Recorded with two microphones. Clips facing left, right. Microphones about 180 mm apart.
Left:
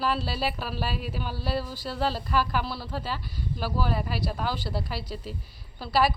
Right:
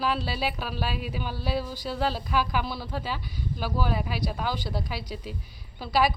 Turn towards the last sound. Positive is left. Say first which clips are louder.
# even
turn(degrees=0)  # may be behind; listen again after turning